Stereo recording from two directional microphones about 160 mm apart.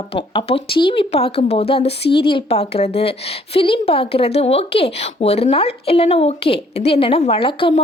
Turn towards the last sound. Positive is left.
turn(degrees=35)  # may be behind; listen again after turning